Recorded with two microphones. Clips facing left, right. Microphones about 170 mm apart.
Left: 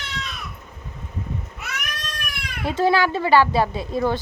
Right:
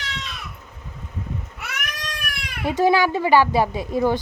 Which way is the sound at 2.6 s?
15° right (ahead or behind).